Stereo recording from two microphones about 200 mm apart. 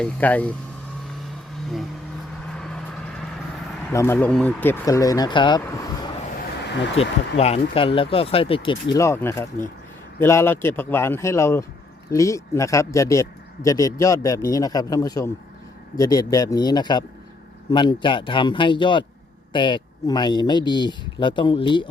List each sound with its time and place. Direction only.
0.0 s speech: 10° left (ahead or behind)
2.5 s vehicle: 5° left (ahead or behind)
3.8 s speech: 10° left (ahead or behind)
6.9 s speech: 30° left (ahead or behind)